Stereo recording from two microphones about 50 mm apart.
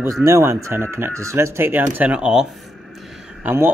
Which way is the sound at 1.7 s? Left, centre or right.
Right.